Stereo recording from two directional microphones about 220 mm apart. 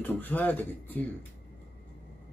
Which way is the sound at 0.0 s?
10° left (ahead or behind).